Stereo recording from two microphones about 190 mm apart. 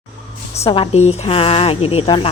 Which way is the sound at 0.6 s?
30° left (ahead or behind).